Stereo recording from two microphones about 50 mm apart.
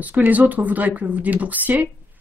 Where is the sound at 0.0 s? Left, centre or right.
Right.